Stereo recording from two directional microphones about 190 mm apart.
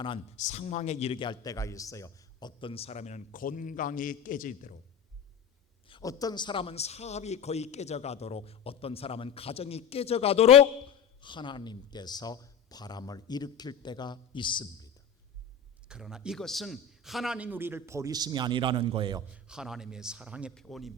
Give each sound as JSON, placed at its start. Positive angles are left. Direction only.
{"t": 0.3, "sound": "a man's voice", "side_deg": 40}
{"t": 5.9, "sound": "a man's voice", "side_deg": 20}
{"t": 15.9, "sound": "a man's voice", "side_deg": -5}
{"t": 19.3, "sound": "a man's voice", "side_deg": -5}